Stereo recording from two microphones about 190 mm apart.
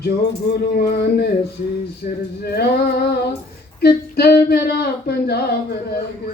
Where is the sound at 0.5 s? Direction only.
60° left (ahead or behind).